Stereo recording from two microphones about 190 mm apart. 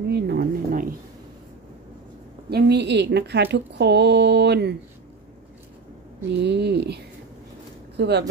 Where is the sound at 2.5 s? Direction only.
60° right (ahead or behind).